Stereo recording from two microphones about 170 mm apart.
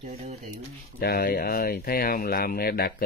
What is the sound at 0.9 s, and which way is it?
Speech, 65° left (ahead or behind).